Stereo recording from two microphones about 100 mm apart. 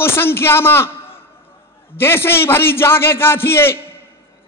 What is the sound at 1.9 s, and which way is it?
A man's voice, 25° left (ahead or behind).